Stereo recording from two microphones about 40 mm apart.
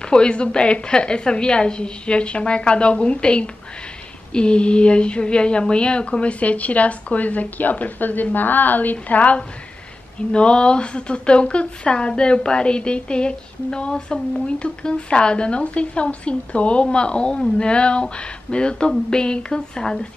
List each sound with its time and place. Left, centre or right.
0.0 s a woman's voice: left
8.9 s a woman's voice: left